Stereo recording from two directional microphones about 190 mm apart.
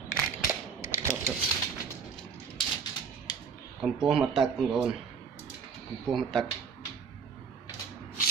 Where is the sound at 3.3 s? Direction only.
20° left (ahead or behind).